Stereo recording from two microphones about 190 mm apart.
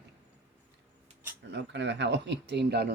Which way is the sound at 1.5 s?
70° right (ahead or behind).